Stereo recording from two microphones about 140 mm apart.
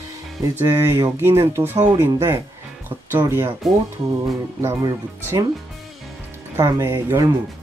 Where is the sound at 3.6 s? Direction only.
Centre (ahead or behind).